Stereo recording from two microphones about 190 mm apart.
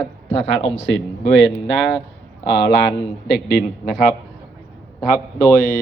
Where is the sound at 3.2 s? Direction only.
60° left (ahead or behind).